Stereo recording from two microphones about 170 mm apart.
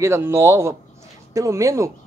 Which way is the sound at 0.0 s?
15° right (ahead or behind).